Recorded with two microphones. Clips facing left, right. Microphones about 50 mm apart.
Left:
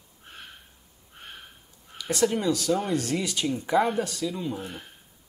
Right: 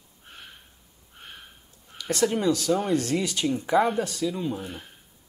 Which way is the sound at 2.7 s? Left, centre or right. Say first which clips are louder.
Right 2 dB; centre.